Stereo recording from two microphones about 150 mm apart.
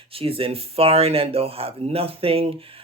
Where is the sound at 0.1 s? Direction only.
40° right (ahead or behind).